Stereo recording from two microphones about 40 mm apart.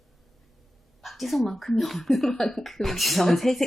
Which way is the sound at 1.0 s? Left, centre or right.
Centre.